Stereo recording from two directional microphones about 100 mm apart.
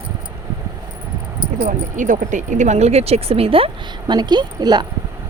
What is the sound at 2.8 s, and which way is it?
Speech, 90° right.